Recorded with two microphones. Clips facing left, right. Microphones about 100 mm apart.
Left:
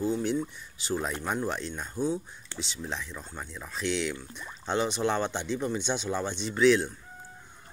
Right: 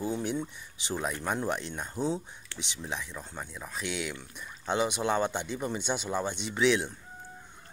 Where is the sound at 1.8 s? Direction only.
25° right (ahead or behind).